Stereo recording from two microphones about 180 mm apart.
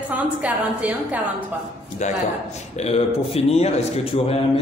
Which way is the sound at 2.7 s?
35° left (ahead or behind).